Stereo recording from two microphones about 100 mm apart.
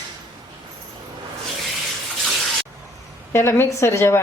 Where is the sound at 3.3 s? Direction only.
25° left (ahead or behind).